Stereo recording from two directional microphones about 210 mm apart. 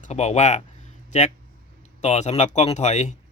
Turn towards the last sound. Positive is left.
turn(degrees=35)  # may be behind; listen again after turning